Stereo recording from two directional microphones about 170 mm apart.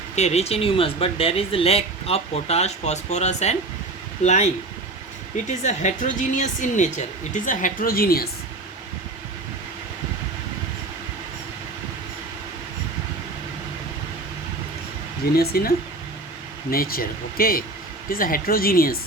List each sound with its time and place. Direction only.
0.2 s a woman's voice: 40° left (ahead or behind)
5.5 s a woman's voice: 45° left (ahead or behind); by 8.3 s 60° left (ahead or behind)
15.4 s speech: 65° left (ahead or behind)
16.7 s speech: 60° left (ahead or behind)